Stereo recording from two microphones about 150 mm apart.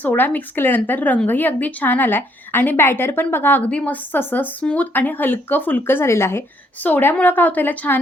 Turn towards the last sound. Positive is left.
turn(degrees=15)  # may be behind; listen again after turning